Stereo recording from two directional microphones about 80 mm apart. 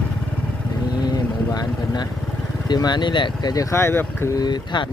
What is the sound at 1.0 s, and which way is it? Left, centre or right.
Vehicle, left.